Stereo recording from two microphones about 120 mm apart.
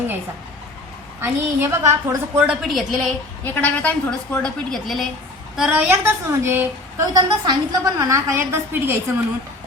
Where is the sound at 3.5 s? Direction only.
15° left (ahead or behind); by 5.8 s 5° right (ahead or behind).